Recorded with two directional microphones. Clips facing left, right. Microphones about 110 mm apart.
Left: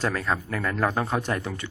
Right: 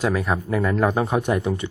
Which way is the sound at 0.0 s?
15° right (ahead or behind).